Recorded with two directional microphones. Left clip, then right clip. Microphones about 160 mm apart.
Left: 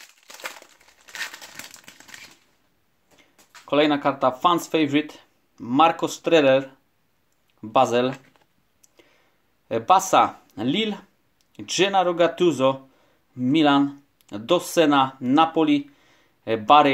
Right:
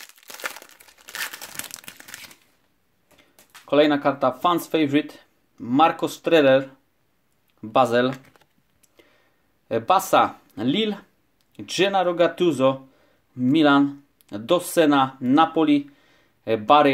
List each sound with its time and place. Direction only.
0.3 s crumpling: 20° right (ahead or behind)
3.2 s speech: 5° right (ahead or behind)
9.7 s speech: 5° right (ahead or behind)